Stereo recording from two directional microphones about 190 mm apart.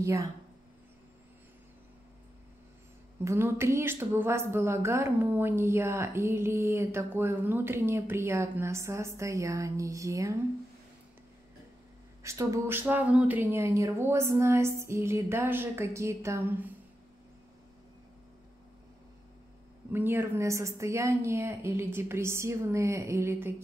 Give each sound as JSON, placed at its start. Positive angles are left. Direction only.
{"t": 0.0, "sound": "a woman's voice", "side_deg": -15}
{"t": 3.3, "sound": "a woman's voice", "side_deg": -15}
{"t": 12.2, "sound": "a woman's voice", "side_deg": -15}
{"t": 19.9, "sound": "a woman's voice", "side_deg": -10}